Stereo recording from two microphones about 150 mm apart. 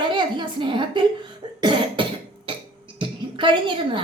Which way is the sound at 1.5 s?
30° right (ahead or behind).